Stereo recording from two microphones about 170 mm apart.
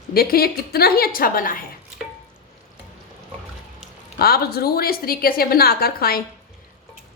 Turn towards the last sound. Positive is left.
turn(degrees=65)  # may be behind; listen again after turning